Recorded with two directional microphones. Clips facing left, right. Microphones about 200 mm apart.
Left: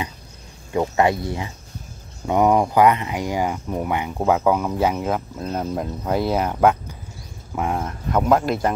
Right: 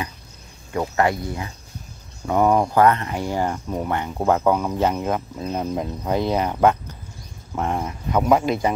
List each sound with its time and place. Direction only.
0.7 s speech: 20° left (ahead or behind); by 8.7 s centre (ahead or behind)